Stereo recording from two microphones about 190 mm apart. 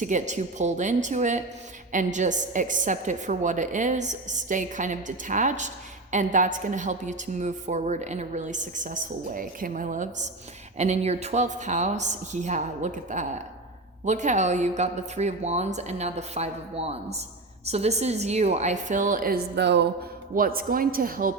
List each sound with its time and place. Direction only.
0.0 s a woman's voice: 40° right (ahead or behind)